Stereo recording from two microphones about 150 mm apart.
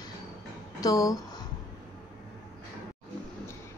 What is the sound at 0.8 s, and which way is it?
Speech, 25° left (ahead or behind).